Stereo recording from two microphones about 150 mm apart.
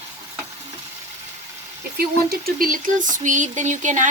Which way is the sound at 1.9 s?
90° right.